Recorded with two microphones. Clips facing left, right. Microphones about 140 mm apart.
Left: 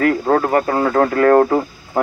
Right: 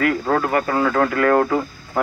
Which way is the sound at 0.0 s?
35° left (ahead or behind).